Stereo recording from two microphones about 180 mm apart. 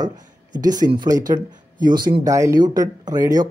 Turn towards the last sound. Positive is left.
turn(degrees=-20)  # may be behind; listen again after turning